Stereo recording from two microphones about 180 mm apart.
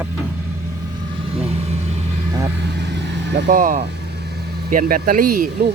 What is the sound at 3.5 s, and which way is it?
Speech, 50° right (ahead or behind).